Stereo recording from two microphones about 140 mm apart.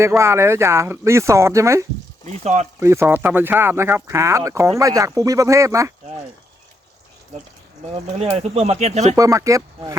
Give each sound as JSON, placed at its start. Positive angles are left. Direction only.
{"t": 0.2, "sound": "speech", "side_deg": -20}
{"t": 2.2, "sound": "speech", "side_deg": -55}
{"t": 2.8, "sound": "speech", "side_deg": -20}
{"t": 8.2, "sound": "speech", "side_deg": -45}
{"t": 9.1, "sound": "speech", "side_deg": -25}